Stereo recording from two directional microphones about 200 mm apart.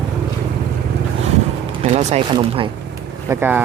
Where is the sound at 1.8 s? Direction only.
35° right (ahead or behind).